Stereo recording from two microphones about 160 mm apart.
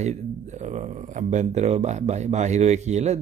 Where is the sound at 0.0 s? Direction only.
45° right (ahead or behind).